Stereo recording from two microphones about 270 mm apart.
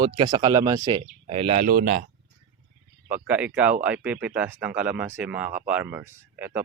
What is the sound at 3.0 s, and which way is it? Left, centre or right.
Speech, centre.